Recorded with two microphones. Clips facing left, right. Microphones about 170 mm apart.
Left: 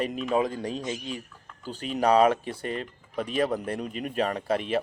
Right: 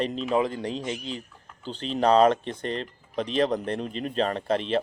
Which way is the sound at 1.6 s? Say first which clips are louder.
Right 1 dB; 10° left (ahead or behind).